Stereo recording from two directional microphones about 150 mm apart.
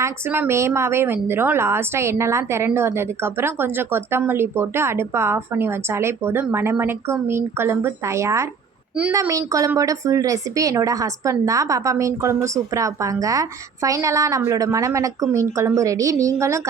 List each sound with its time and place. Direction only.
0.0 s a woman's voice: 15° right (ahead or behind)